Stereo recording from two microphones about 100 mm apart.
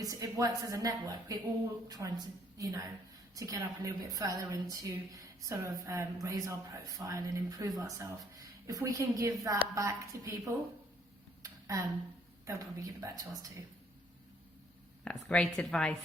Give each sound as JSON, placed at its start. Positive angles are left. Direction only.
{"t": 0.0, "sound": "a woman's voice", "side_deg": -35}
{"t": 11.4, "sound": "a sound", "side_deg": -35}
{"t": 12.5, "sound": "a woman's voice", "side_deg": -35}
{"t": 15.0, "sound": "a woman's voice", "side_deg": 10}